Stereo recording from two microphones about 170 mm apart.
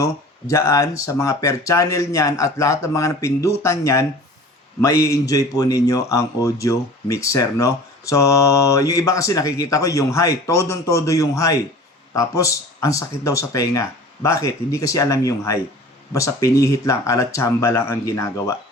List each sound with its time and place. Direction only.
0.0 s a man's voice: 15° left (ahead or behind)